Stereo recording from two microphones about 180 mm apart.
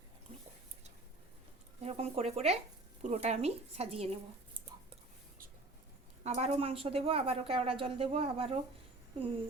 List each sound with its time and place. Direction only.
1.8 s a woman's voice: 35° right (ahead or behind)
6.2 s a woman's voice: 40° right (ahead or behind)